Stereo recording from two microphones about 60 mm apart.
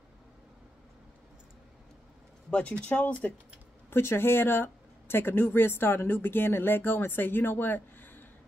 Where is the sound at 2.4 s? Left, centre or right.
Left.